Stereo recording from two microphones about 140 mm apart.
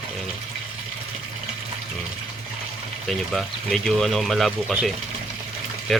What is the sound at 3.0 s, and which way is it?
A man's voice, centre (ahead or behind).